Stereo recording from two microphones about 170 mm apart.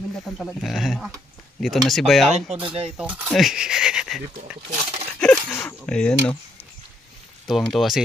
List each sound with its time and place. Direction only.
0.4 s speech: centre (ahead or behind)
4.6 s speech: 40° right (ahead or behind)
5.2 s a sound: 10° left (ahead or behind)
7.4 s speech: centre (ahead or behind)